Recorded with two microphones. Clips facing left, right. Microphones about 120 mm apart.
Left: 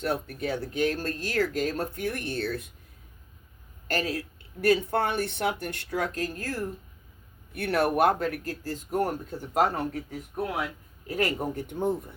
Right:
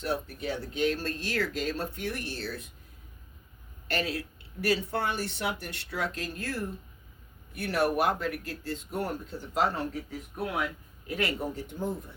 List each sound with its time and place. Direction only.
0.0 s speech: 55° left (ahead or behind)
3.8 s speech: 40° left (ahead or behind)
4.6 s speech: 55° left (ahead or behind)
7.5 s speech: 60° left (ahead or behind)